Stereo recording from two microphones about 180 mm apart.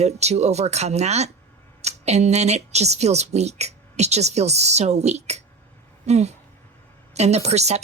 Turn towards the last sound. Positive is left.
turn(degrees=-35)  # may be behind; listen again after turning